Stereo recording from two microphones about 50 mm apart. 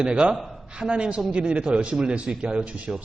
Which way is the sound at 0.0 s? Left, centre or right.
Right.